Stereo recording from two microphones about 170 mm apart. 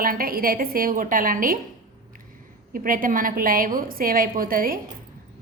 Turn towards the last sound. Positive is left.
turn(degrees=-55)  # may be behind; listen again after turning